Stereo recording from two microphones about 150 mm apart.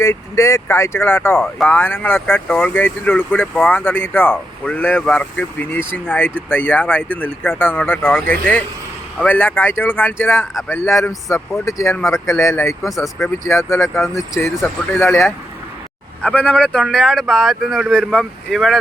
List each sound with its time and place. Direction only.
0.0 s speech: 20° left (ahead or behind); by 18.8 s centre (ahead or behind)